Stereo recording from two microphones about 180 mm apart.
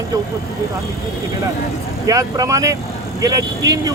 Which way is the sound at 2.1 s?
20° right (ahead or behind).